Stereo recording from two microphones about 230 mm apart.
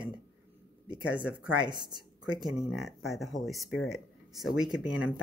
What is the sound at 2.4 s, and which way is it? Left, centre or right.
Speech, centre.